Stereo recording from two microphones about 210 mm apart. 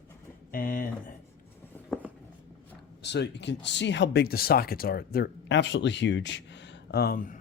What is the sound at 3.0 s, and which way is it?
Speech, 55° left (ahead or behind).